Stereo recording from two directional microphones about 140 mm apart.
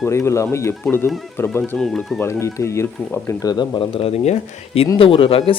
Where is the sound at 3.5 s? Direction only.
40° left (ahead or behind).